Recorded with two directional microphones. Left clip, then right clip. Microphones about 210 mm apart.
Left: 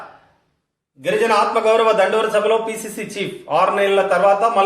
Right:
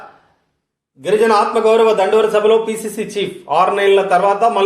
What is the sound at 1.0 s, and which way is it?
A man's voice, 40° right (ahead or behind).